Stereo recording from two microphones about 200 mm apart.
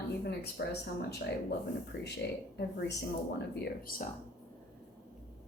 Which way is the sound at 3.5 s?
55° left (ahead or behind).